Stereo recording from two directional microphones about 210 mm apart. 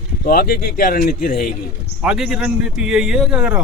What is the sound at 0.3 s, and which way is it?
Speech, 45° left (ahead or behind).